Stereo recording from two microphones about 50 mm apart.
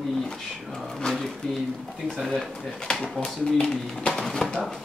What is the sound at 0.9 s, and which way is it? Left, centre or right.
Speech, centre.